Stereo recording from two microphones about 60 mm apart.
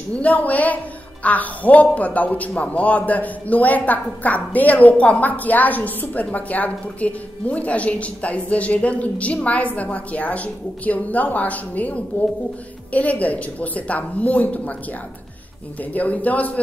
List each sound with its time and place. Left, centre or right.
0.1 s a man's voice: left
15.8 s a man's voice: left